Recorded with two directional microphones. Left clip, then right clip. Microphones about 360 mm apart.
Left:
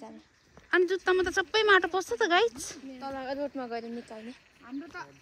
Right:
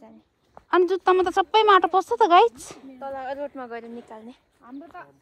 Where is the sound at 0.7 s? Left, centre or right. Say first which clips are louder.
Right 6 dB; centre.